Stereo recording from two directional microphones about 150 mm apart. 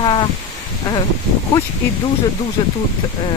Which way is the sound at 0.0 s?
30° left (ahead or behind).